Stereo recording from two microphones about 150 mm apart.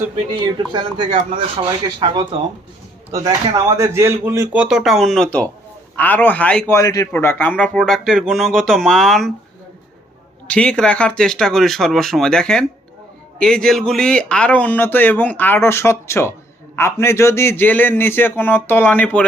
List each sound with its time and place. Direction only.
0.7 s speech: 35° right (ahead or behind)
3.1 s speech: 25° right (ahead or behind)
4.6 s speech: 5° right (ahead or behind)
6.7 s a man's voice: 20° left (ahead or behind); by 9.3 s centre (ahead or behind)
10.5 s speech: 10° left (ahead or behind)